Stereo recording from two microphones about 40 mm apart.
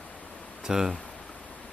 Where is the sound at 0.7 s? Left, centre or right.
Centre.